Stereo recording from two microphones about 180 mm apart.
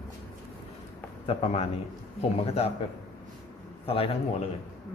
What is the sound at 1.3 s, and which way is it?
A man's voice, 35° left (ahead or behind).